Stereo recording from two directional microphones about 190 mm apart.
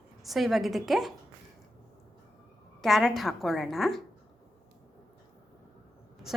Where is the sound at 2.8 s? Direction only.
Centre (ahead or behind).